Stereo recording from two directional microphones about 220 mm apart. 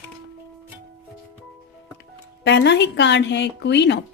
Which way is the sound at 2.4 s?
50° left (ahead or behind).